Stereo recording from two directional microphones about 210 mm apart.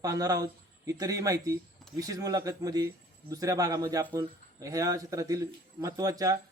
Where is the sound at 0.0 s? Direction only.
15° right (ahead or behind).